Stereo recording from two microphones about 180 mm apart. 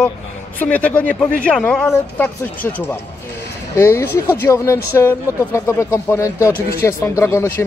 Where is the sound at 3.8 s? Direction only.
15° left (ahead or behind).